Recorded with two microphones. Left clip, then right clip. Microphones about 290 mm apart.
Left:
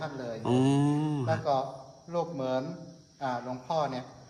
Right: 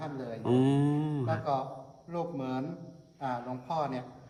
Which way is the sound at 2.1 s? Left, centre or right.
Centre.